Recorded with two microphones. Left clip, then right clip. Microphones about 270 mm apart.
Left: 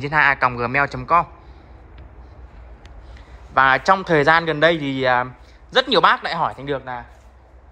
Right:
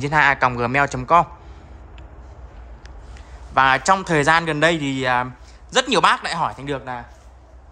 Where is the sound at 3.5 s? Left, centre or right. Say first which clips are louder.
Left 1 dB; centre.